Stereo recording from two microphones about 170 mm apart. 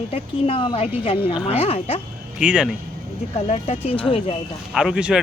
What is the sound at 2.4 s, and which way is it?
Speech, 5° right (ahead or behind).